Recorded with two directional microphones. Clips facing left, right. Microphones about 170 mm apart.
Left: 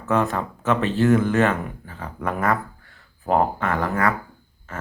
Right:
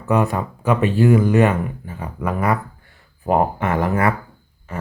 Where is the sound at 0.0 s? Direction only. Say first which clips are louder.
Right 3 dB; 15° right (ahead or behind).